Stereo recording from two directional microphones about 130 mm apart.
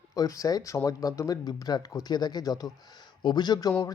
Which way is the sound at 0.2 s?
25° left (ahead or behind).